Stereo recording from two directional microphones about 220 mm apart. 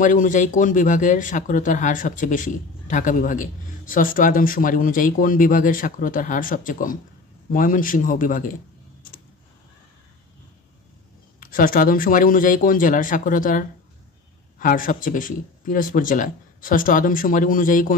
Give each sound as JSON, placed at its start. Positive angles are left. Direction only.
{"t": 0.0, "sound": "speech", "side_deg": 35}
{"t": 11.3, "sound": "speech", "side_deg": 40}